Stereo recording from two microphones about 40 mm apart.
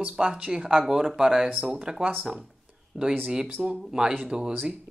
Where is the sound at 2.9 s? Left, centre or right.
Centre.